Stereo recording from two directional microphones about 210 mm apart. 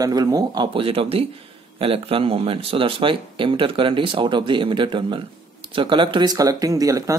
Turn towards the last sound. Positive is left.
turn(degrees=-15)  # may be behind; listen again after turning